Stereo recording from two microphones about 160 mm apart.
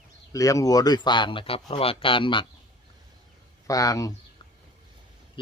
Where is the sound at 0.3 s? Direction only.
20° left (ahead or behind).